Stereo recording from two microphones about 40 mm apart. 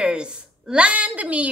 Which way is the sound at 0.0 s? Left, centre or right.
Right.